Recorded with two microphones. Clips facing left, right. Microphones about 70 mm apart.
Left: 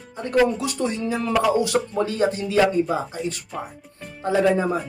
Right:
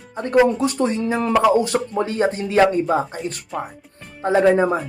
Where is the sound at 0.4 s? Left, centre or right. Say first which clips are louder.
Right 4 dB; right.